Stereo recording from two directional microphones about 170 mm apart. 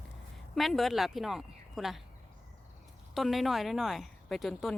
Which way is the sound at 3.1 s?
Centre (ahead or behind).